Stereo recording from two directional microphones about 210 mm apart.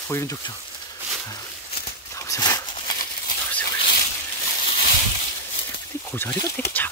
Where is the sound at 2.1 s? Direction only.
15° left (ahead or behind).